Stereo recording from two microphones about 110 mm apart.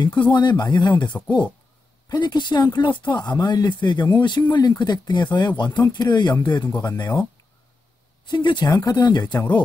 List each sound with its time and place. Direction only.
0.0 s speech: 45° left (ahead or behind)
8.3 s speech: 45° left (ahead or behind)